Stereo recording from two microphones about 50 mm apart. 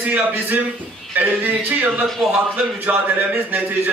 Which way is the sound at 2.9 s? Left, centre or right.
Right.